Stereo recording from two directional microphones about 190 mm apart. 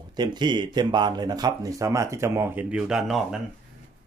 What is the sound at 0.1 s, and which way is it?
Speech, 20° right (ahead or behind).